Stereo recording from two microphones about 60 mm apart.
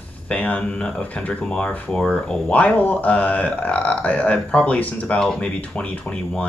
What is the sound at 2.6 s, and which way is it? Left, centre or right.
Speech, left.